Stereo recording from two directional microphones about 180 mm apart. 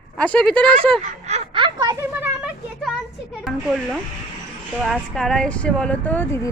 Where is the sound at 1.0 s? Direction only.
35° right (ahead or behind); by 2.0 s 20° right (ahead or behind).